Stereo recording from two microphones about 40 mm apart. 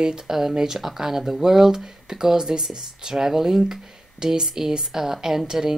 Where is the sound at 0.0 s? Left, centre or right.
Centre.